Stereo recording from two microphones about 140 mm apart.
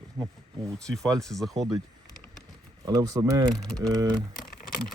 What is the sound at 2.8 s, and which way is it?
Speech, 25° right (ahead or behind).